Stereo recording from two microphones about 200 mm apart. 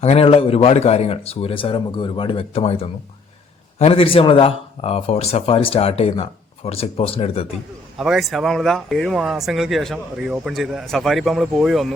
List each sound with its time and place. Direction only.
0.0 s speech: 30° left (ahead or behind)
7.9 s speech: centre (ahead or behind)